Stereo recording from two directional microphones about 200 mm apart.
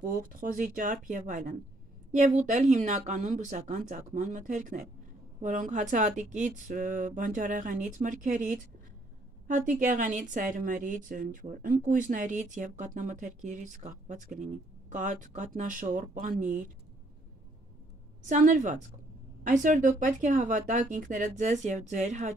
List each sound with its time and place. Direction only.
0.1 s a woman's voice: 40° right (ahead or behind)
18.2 s a woman's voice: 40° right (ahead or behind)